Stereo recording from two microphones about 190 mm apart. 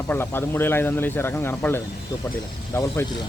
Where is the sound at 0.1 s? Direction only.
10° left (ahead or behind).